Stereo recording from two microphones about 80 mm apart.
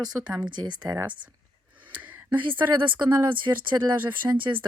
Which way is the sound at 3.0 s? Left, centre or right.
Right.